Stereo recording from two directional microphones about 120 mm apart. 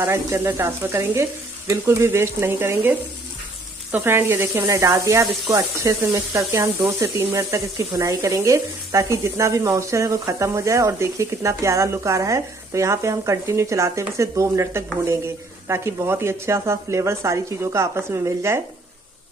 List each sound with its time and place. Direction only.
0.0 s speech: 20° right (ahead or behind)